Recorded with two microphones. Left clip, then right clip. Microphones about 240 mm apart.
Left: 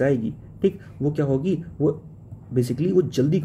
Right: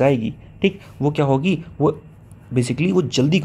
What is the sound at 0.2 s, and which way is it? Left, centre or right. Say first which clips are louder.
Speech: right 2 dB; centre.